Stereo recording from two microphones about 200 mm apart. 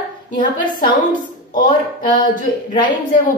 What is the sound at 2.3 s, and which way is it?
Speech, 40° left (ahead or behind).